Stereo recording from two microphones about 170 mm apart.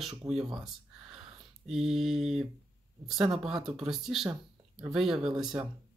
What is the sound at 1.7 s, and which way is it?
Speech, centre (ahead or behind).